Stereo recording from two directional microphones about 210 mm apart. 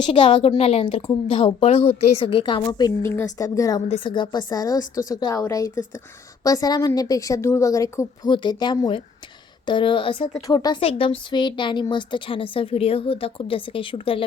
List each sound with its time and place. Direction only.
0.0 s a woman's voice: 25° left (ahead or behind)
3.8 s a woman's voice: 30° left (ahead or behind)